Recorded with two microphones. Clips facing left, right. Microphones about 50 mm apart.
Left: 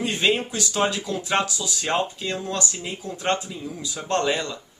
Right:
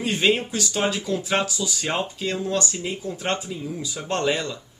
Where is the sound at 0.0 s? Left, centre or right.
Centre.